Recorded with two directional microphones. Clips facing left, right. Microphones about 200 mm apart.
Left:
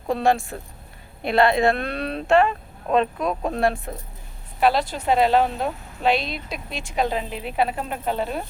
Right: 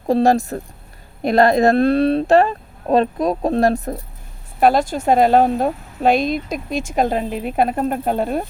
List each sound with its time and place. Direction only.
0.1 s speech: 40° right (ahead or behind)